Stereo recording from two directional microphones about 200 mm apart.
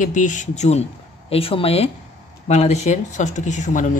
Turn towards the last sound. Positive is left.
turn(degrees=40)  # may be behind; listen again after turning